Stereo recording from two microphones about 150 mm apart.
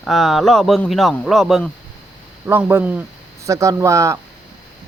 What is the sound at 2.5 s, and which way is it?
Speech, 15° right (ahead or behind).